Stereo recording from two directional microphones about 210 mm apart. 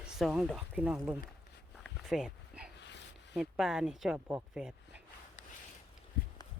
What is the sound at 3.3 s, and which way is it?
Speech, 5° right (ahead or behind).